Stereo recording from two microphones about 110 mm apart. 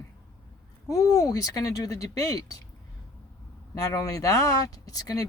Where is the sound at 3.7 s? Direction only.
30° left (ahead or behind).